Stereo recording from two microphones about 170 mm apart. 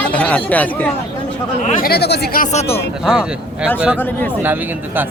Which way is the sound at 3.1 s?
5° right (ahead or behind).